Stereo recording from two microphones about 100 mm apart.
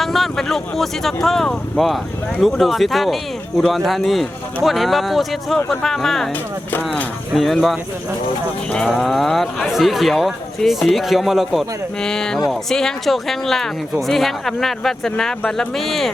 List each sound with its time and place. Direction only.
0.0 s speech: centre (ahead or behind)
6.7 s speech: 20° left (ahead or behind)
7.3 s speech: centre (ahead or behind)
8.9 s speech: centre (ahead or behind)